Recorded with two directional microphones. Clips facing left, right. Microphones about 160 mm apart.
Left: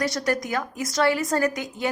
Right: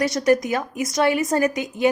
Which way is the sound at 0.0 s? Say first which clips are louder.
Right 6 dB; 20° right (ahead or behind).